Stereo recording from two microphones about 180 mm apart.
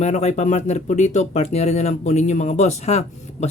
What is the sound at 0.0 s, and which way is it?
Speech, 40° left (ahead or behind).